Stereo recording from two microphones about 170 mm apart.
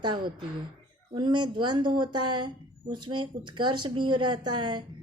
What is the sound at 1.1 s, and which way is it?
A woman's voice, 25° right (ahead or behind).